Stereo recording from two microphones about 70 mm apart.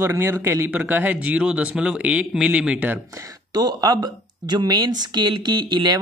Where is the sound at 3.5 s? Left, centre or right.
Right.